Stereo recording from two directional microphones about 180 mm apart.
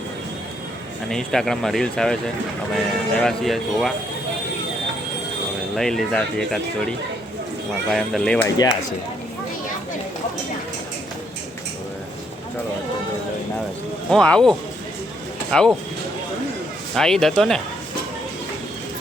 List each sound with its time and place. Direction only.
1.1 s speech: centre (ahead or behind)
5.7 s speech: centre (ahead or behind)
14.1 s speech: 5° left (ahead or behind)
15.5 s speech: 5° left (ahead or behind)
16.9 s speech: centre (ahead or behind)